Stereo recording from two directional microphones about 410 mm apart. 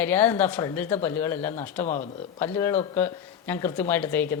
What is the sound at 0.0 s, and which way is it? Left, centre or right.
Speech, centre.